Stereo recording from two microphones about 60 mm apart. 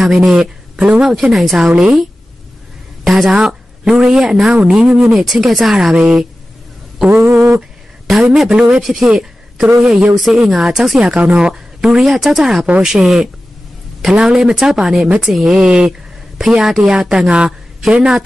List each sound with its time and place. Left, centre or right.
0.0 s speech: centre
0.4 s a woman's voice: centre
1.1 s speech: centre
3.0 s a sound: centre
3.3 s speech: centre
7.1 s a sound: right
8.4 s speech: centre
8.8 s a woman's voice: centre
11.5 s speech: centre